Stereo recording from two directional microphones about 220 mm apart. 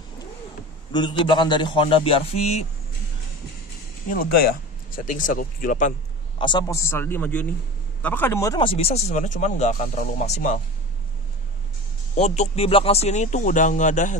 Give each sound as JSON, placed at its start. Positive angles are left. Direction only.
{"t": 0.9, "sound": "a man's voice", "side_deg": 20}
{"t": 4.9, "sound": "speech", "side_deg": 35}
{"t": 6.3, "sound": "a man's voice", "side_deg": 20}
{"t": 12.2, "sound": "speech", "side_deg": 30}